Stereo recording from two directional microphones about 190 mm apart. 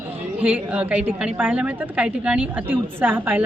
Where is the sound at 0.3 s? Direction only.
5° right (ahead or behind).